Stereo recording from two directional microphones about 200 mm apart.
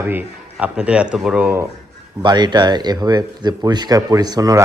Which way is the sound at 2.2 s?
20° right (ahead or behind).